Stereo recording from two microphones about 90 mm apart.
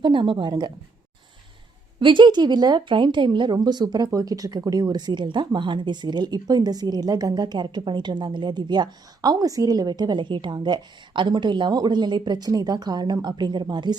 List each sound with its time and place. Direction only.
0.0 s a woman's voice: 65° right (ahead or behind)
2.0 s a woman's voice: 65° right (ahead or behind)